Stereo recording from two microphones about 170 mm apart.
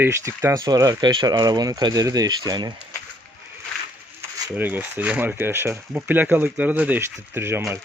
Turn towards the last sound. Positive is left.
turn(degrees=-15)  # may be behind; listen again after turning